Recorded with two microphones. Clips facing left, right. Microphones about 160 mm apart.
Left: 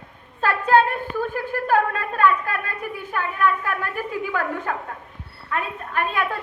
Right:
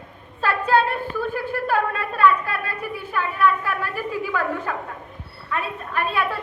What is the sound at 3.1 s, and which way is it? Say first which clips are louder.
Speech: right 2 dB; 50° left (ahead or behind).